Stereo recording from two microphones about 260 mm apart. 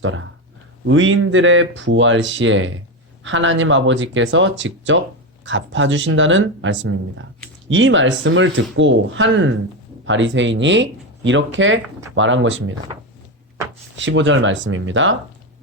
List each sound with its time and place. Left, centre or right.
0.0 s speech: right
13.9 s speech: right